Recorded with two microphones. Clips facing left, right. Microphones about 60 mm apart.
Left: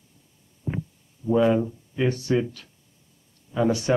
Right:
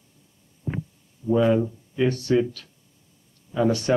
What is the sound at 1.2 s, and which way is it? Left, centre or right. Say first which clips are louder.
Speech: even; centre.